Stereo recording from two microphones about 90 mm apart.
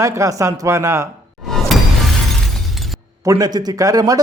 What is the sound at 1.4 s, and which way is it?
Music, centre (ahead or behind).